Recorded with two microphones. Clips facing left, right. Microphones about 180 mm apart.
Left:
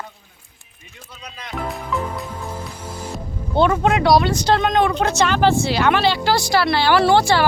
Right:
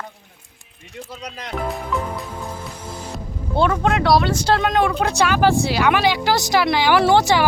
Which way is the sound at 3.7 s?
5° left (ahead or behind).